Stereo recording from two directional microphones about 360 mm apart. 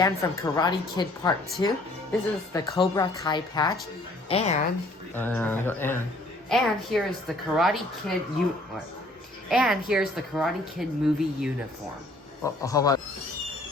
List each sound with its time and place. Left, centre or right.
0.0 s a woman's voice: centre
5.1 s speech: centre
9.5 s speech: centre
12.4 s a woman's voice: centre